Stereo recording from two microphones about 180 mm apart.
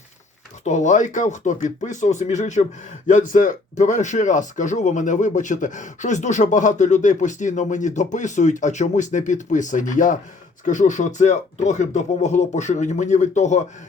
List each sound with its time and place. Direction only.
0.6 s speech: 40° left (ahead or behind)